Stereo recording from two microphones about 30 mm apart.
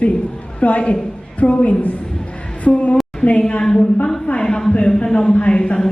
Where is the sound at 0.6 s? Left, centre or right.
Left.